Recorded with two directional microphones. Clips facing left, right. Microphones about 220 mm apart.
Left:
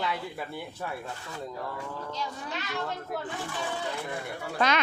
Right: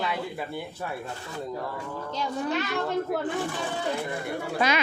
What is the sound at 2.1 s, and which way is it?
Speech, 60° right (ahead or behind).